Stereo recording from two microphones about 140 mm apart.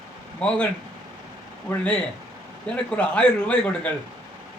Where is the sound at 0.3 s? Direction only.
5° left (ahead or behind).